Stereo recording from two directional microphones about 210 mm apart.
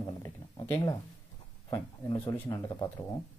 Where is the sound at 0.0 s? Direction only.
15° left (ahead or behind).